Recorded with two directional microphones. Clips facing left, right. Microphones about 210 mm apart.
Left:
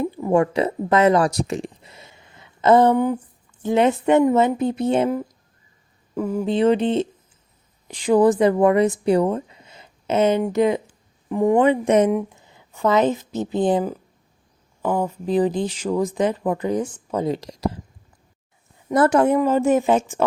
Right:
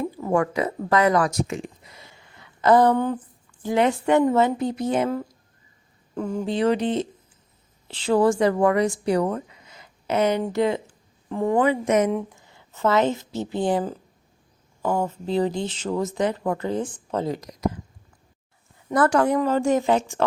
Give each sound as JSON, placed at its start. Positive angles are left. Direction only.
{"t": 0.2, "sound": "speech", "side_deg": 25}
{"t": 2.9, "sound": "speech", "side_deg": 10}
{"t": 6.1, "sound": "speech", "side_deg": 5}
{"t": 6.4, "sound": "speech", "side_deg": 20}
{"t": 12.1, "sound": "a woman's voice", "side_deg": 15}
{"t": 17.2, "sound": "speech", "side_deg": 25}
{"t": 18.9, "sound": "speech", "side_deg": 25}